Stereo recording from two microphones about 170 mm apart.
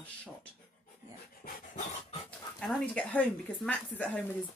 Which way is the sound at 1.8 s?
40° left (ahead or behind).